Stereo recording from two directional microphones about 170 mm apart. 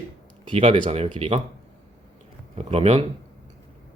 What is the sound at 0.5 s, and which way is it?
Speech, 30° right (ahead or behind).